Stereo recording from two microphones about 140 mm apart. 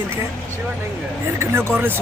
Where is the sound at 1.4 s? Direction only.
20° right (ahead or behind).